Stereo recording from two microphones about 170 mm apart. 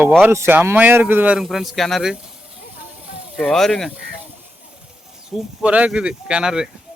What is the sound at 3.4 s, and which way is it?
Speech, centre (ahead or behind).